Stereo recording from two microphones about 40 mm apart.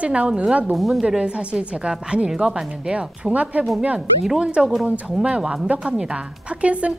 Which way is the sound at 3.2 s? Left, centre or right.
Right.